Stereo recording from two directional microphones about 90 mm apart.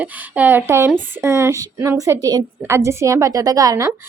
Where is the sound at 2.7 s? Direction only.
30° right (ahead or behind).